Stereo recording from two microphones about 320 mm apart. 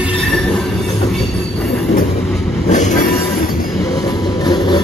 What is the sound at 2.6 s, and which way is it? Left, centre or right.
Train, left.